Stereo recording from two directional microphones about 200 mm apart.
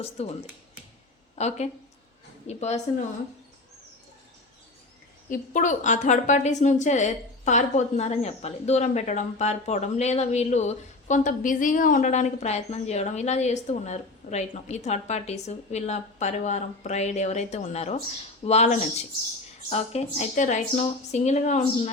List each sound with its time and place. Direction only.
0.0 s speech: 30° left (ahead or behind)
1.4 s a woman's voice: 35° left (ahead or behind)
5.3 s a woman's voice: 40° left (ahead or behind)